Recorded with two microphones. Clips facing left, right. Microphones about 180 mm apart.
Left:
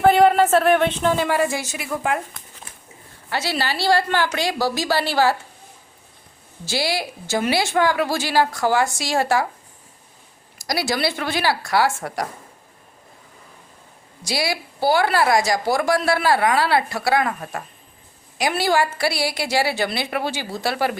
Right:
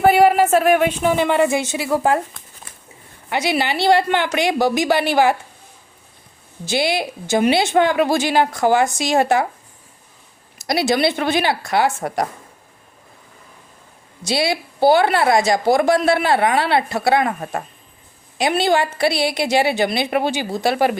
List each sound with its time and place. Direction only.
0.0 s a woman's voice: 10° right (ahead or behind)
3.2 s a woman's voice: 15° right (ahead or behind)
6.7 s a woman's voice: 20° right (ahead or behind)
10.6 s a woman's voice: 20° right (ahead or behind)
14.3 s a woman's voice: 25° right (ahead or behind)